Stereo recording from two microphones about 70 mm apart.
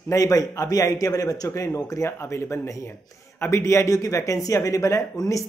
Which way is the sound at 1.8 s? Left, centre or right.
Left.